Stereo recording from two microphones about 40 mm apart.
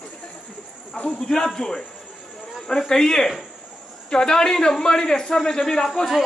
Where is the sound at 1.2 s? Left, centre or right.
Centre.